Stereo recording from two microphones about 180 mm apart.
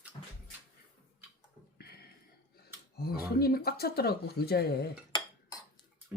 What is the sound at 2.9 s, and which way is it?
Speech, 60° left (ahead or behind).